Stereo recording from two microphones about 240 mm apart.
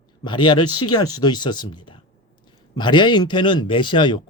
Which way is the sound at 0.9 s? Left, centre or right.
Centre.